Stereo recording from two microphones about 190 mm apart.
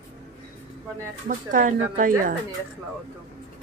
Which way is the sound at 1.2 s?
45° right (ahead or behind).